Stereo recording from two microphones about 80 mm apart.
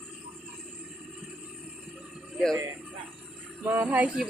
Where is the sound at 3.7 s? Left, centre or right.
Centre.